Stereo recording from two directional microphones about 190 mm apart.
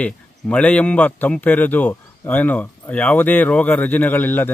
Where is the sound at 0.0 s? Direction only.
10° left (ahead or behind).